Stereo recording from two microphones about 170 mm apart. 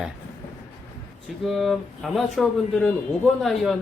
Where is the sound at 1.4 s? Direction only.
Centre (ahead or behind).